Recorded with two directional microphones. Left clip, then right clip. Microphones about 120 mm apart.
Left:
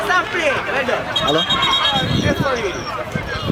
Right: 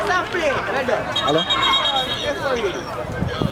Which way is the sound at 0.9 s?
Centre (ahead or behind).